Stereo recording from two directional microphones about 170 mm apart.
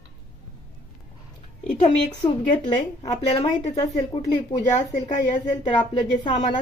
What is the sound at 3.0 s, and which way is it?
A woman's voice, 40° left (ahead or behind).